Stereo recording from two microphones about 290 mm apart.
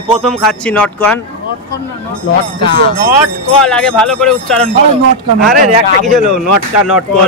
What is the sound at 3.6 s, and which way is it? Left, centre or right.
Speech, centre.